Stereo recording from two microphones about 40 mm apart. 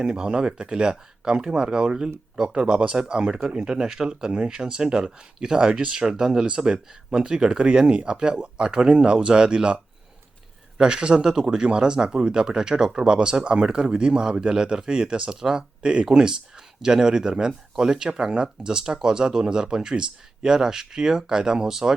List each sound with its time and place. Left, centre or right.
0.0 s speech: right